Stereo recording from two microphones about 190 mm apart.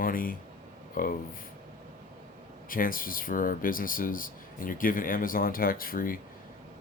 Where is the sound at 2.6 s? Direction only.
50° left (ahead or behind).